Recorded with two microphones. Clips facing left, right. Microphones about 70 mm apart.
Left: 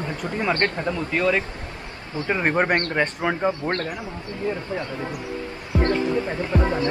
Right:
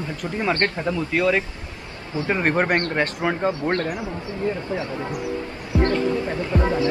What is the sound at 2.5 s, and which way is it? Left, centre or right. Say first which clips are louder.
Music: even; centre.